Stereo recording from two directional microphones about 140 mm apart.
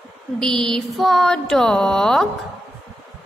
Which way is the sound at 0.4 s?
5° left (ahead or behind).